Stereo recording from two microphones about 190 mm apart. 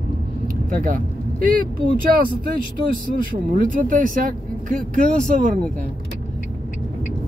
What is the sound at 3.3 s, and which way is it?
Speech, 45° right (ahead or behind).